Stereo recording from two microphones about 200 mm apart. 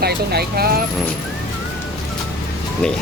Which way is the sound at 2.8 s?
5° left (ahead or behind).